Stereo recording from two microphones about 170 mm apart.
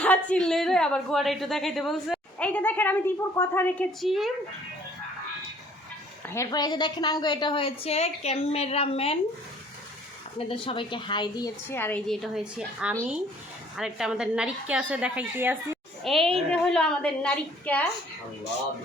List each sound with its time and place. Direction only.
0.0 s a woman's voice: 10° left (ahead or behind)
4.0 s a woman's voice: centre (ahead or behind)
6.2 s a woman's voice: 15° left (ahead or behind); by 9.1 s 35° left (ahead or behind)
10.3 s a woman's voice: 30° left (ahead or behind); by 15.8 s 10° right (ahead or behind)
16.0 s a woman's voice: centre (ahead or behind)